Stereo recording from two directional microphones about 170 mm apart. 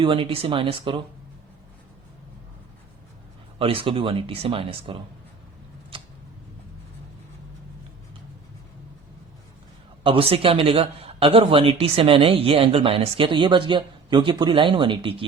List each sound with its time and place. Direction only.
0.0 s a man's voice: 30° right (ahead or behind)
3.6 s a man's voice: 35° right (ahead or behind)
10.0 s a man's voice: 35° right (ahead or behind)